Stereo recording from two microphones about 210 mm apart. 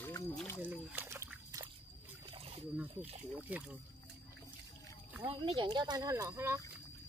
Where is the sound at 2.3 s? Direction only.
25° right (ahead or behind).